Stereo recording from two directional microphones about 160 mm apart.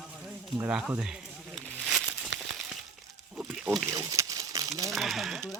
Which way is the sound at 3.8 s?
20° right (ahead or behind).